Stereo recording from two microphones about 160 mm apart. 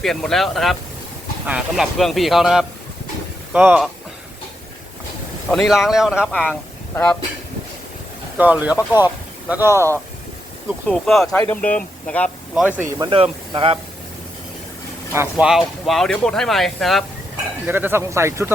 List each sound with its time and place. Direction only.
0.0 s speech: centre (ahead or behind)
5.5 s speech: centre (ahead or behind)
6.5 s speech: 10° left (ahead or behind)
8.4 s speech: 10° right (ahead or behind)
10.8 s speech: 5° left (ahead or behind)
12.5 s speech: 10° right (ahead or behind)
13.0 s speech: 35° right (ahead or behind)
15.1 s speech: 15° right (ahead or behind)
15.4 s speech: centre (ahead or behind)
17.7 s speech: 10° right (ahead or behind)